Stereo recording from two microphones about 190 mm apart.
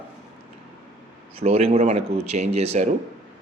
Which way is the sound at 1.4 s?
35° right (ahead or behind).